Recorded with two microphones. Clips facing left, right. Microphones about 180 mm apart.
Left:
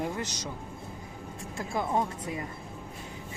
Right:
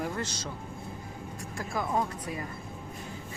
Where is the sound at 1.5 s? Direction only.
25° left (ahead or behind).